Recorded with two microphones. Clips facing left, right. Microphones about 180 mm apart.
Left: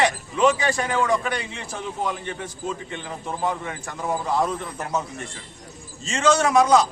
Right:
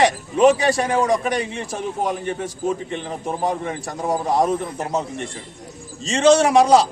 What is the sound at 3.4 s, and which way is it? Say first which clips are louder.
A man's voice: right 3 dB; 35° right (ahead or behind).